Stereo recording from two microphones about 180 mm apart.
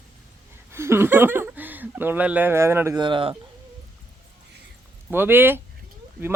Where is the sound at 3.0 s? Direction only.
30° right (ahead or behind).